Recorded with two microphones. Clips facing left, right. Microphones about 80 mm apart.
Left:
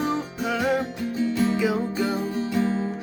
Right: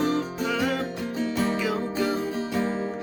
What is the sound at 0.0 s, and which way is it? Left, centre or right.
Music, centre.